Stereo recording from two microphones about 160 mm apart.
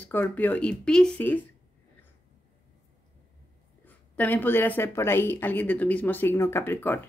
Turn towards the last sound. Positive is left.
turn(degrees=15)  # may be behind; listen again after turning